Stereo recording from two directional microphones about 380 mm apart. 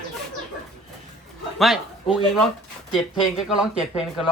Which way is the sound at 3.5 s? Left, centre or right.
Centre.